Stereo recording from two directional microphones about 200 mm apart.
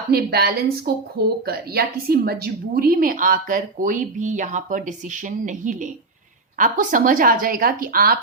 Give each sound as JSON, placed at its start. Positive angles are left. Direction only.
{"t": 0.1, "sound": "a woman's voice", "side_deg": -50}